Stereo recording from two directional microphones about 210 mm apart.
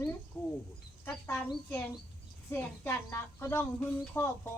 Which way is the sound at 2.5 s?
10° left (ahead or behind).